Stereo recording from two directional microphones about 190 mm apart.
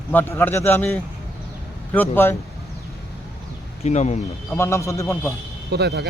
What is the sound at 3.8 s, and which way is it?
Speech, 35° left (ahead or behind).